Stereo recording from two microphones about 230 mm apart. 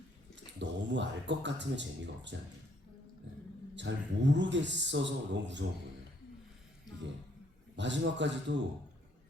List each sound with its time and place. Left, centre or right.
0.6 s a man's voice: right
3.8 s a man's voice: right
7.8 s a man's voice: right